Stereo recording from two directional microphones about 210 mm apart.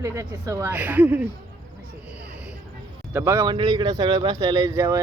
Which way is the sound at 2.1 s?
5° right (ahead or behind).